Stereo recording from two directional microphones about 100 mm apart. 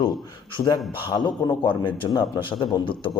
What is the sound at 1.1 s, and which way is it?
A man's voice, 50° left (ahead or behind).